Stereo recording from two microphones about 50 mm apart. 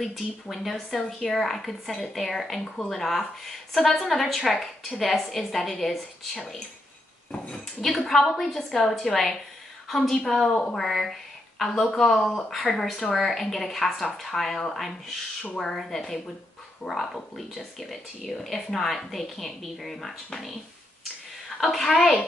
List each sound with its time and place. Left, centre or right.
0.0 s a woman's voice: centre
7.3 s speech: centre
7.8 s a woman's voice: centre
21.5 s a woman's voice: centre